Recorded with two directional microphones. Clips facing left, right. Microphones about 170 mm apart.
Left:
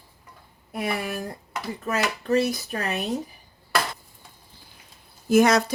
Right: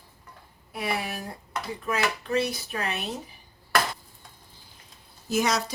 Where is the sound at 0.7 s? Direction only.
45° left (ahead or behind).